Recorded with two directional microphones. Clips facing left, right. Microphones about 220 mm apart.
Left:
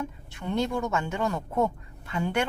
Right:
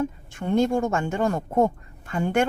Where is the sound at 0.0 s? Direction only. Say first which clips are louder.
Right 7 dB; 50° right (ahead or behind).